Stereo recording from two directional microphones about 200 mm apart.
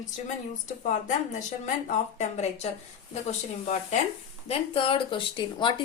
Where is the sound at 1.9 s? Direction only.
35° left (ahead or behind).